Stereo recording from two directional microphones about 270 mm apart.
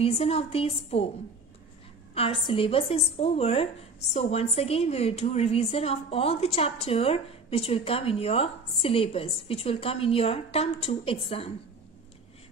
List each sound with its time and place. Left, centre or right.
0.0 s a woman's voice: left
2.1 s a woman's voice: centre